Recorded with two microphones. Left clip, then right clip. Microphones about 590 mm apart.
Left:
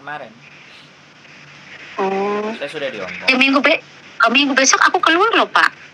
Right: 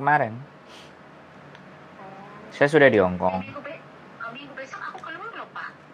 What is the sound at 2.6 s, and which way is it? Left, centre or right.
Speech, right.